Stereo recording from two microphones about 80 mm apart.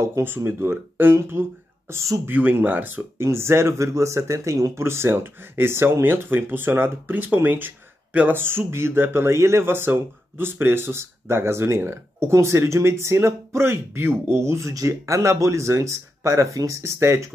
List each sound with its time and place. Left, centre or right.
0.0 s speech: right
1.9 s speech: right
2.2 s speech: right